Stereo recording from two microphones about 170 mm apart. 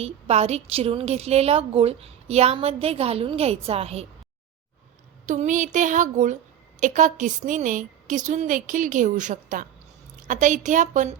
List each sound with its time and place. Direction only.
0.0 s a woman's voice: 40° right (ahead or behind)
5.2 s a woman's voice: 45° right (ahead or behind)